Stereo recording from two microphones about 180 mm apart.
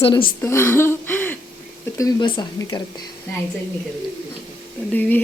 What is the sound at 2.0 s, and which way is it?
Speech, 25° left (ahead or behind).